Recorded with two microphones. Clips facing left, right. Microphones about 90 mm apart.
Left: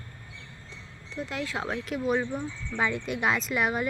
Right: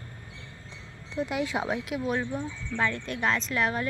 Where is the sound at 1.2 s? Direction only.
20° right (ahead or behind).